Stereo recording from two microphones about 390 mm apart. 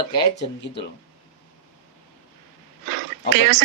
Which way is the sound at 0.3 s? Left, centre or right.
Left.